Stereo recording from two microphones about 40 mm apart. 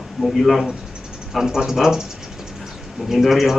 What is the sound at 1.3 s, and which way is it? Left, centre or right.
Speech, centre.